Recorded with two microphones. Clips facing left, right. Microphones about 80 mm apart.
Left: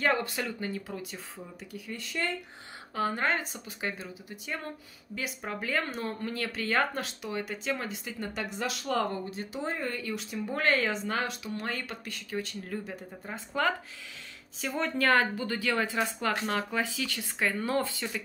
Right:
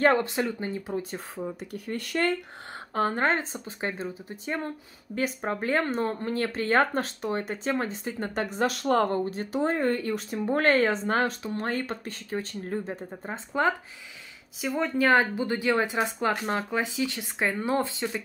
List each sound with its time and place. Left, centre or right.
0.2 s speech: right
1.1 s speech: right
2.9 s speech: right
14.6 s speech: centre